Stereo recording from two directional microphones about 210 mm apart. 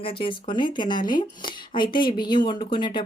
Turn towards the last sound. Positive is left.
turn(degrees=20)  # may be behind; listen again after turning